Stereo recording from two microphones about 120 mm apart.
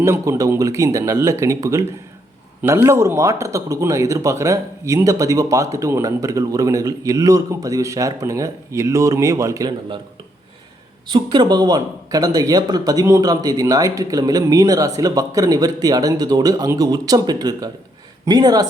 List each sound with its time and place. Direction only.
0.0 s a man's voice: 25° right (ahead or behind)
11.1 s a man's voice: 40° right (ahead or behind)